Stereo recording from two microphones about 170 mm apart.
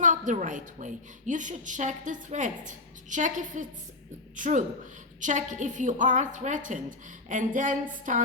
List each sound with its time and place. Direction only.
0.0 s a woman's voice: 50° right (ahead or behind)